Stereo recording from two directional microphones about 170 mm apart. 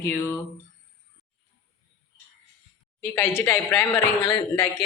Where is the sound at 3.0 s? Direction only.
10° left (ahead or behind).